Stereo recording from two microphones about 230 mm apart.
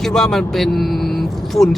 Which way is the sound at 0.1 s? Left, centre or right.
Centre.